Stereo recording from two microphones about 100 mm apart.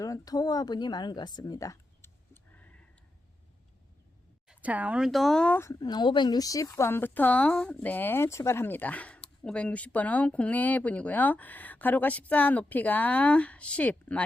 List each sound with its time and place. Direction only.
0.0 s speech: 35° left (ahead or behind)
2.3 s tick: 15° left (ahead or behind)
4.4 s speech: 15° right (ahead or behind); by 5.5 s 5° left (ahead or behind)
5.5 s speech: 25° left (ahead or behind)
5.8 s speech: 45° left (ahead or behind); by 14.3 s 15° left (ahead or behind)